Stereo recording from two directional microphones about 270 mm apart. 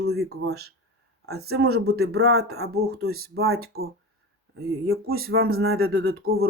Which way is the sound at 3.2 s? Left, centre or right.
Right.